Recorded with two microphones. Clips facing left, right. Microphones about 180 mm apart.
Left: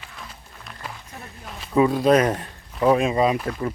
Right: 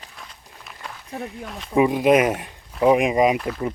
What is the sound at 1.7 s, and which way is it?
Speech, 15° right (ahead or behind).